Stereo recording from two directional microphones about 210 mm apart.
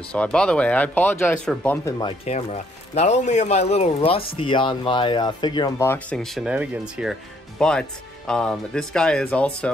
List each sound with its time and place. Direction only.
0.1 s speech: 5° left (ahead or behind)
2.0 s speech: 25° left (ahead or behind); by 9.7 s 5° left (ahead or behind)